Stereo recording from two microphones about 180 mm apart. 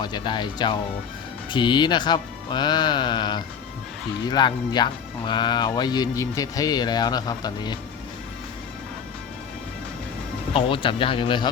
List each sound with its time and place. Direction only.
0.0 s speech: 25° left (ahead or behind)
10.5 s speech: 30° left (ahead or behind)